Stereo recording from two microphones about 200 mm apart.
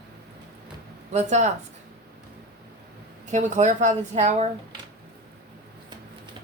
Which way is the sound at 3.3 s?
35° right (ahead or behind).